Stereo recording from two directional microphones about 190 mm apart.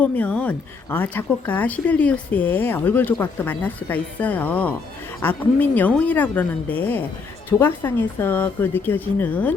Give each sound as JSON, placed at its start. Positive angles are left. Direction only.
{"t": 0.0, "sound": "speech", "side_deg": 5}